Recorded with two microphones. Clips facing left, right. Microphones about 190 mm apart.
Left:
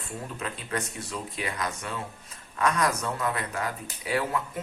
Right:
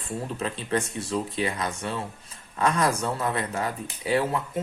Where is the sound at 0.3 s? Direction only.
30° right (ahead or behind).